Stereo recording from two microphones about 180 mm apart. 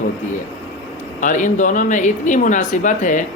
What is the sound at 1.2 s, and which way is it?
Speech, 45° left (ahead or behind).